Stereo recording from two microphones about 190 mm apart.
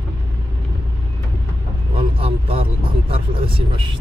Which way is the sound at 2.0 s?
30° right (ahead or behind).